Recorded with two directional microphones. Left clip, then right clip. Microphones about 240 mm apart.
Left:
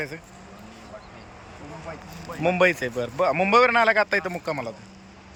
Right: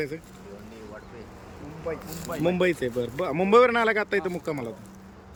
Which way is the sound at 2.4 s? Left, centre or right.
Centre.